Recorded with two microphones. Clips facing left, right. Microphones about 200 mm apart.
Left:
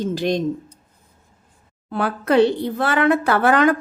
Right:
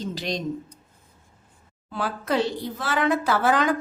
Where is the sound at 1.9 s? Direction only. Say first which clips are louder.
Left 6 dB; 60° left (ahead or behind).